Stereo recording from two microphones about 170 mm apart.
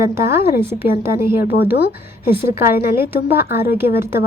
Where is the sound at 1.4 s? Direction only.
65° left (ahead or behind).